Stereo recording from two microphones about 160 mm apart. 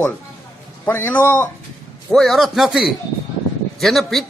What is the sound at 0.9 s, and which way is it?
Speech, 15° left (ahead or behind).